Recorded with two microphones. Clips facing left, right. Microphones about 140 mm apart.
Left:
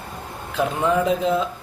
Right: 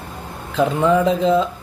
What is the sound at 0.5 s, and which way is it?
Speech, centre (ahead or behind).